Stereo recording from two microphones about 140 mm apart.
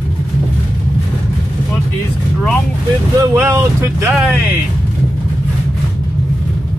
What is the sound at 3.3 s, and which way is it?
Speech, 15° right (ahead or behind).